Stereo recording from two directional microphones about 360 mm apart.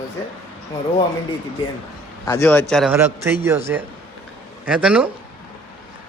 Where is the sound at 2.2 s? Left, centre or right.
Centre.